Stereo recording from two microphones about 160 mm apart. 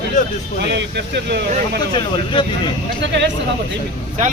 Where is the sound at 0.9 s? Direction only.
90° right.